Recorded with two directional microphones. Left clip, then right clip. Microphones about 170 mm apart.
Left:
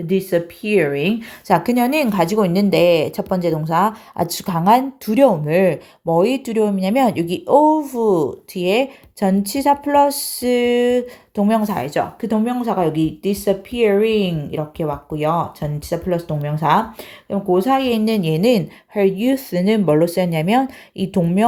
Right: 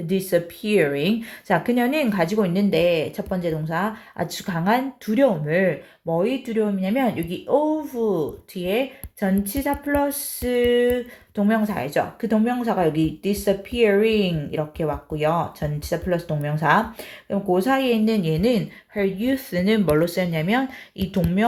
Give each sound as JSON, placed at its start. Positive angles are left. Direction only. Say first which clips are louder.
{"t": 0.1, "sound": "speech", "louder": "left 3 dB", "side_deg": 35}
{"t": 6.2, "sound": "speech", "louder": "left 5 dB", "side_deg": 60}
{"t": 8.5, "sound": "speech", "louder": "left 6 dB", "side_deg": 45}